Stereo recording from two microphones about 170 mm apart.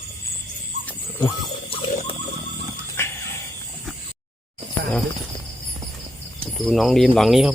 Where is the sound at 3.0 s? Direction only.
15° left (ahead or behind).